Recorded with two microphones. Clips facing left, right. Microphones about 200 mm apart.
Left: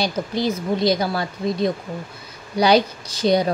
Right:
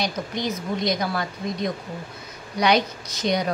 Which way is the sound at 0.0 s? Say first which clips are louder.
Left 5 dB; 30° left (ahead or behind).